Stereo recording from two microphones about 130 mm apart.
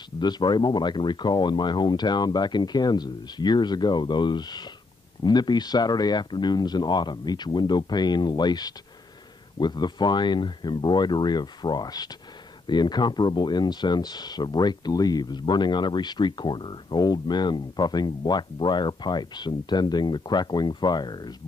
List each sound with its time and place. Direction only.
0.2 s speech: 35° left (ahead or behind)